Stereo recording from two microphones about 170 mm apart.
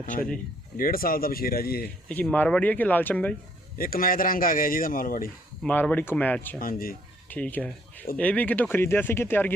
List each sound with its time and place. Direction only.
0.0 s speech: 55° left (ahead or behind)
2.0 s speech: 10° left (ahead or behind)
3.8 s speech: 60° left (ahead or behind)
5.6 s speech: 10° left (ahead or behind)
6.6 s speech: 60° left (ahead or behind)
7.3 s speech: 10° left (ahead or behind)